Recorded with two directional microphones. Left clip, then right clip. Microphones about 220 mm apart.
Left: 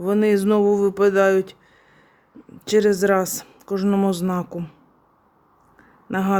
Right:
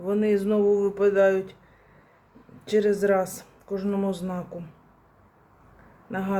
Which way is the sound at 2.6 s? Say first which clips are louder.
Left 5 dB; 50° left (ahead or behind).